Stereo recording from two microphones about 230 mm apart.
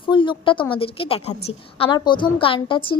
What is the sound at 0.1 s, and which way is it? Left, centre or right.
A woman's voice, left.